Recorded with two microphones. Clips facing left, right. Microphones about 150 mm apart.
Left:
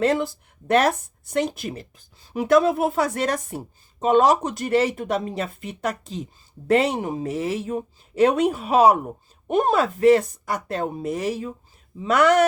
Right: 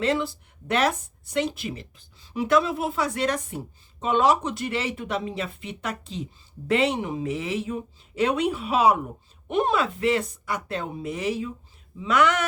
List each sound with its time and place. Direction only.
0.0 s a woman's voice: 45° left (ahead or behind)